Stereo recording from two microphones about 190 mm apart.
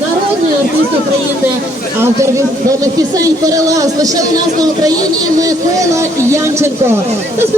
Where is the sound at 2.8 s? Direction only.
20° right (ahead or behind).